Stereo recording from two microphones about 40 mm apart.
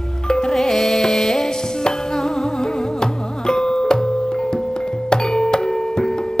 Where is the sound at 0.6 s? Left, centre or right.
Centre.